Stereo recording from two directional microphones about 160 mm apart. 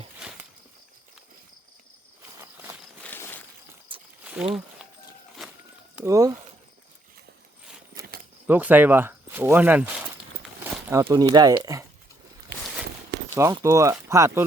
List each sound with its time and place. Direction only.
2.4 s walk: 15° right (ahead or behind)
3.0 s a sound: 10° left (ahead or behind)
4.2 s a sound: 5° right (ahead or behind)
6.1 s speech: 20° right (ahead or behind)
8.4 s speech: 10° right (ahead or behind)
13.5 s speech: 20° right (ahead or behind)